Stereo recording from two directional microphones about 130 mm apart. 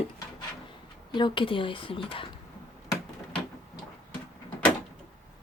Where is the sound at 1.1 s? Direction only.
40° left (ahead or behind).